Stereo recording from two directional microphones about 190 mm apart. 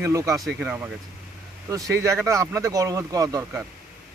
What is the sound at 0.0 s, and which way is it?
Speech, 15° right (ahead or behind).